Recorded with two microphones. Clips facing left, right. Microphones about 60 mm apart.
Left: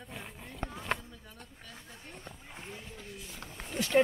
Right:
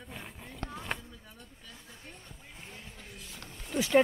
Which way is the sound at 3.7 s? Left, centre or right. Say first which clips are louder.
Right 2 dB; centre.